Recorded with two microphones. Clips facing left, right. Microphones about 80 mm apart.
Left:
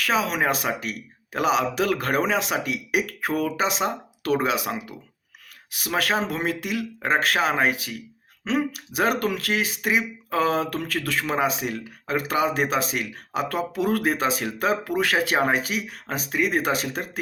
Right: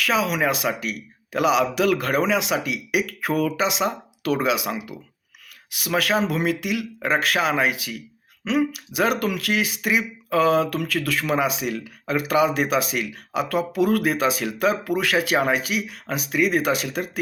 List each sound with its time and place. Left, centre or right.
0.0 s speech: left